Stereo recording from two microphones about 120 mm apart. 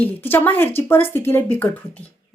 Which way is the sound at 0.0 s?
15° left (ahead or behind).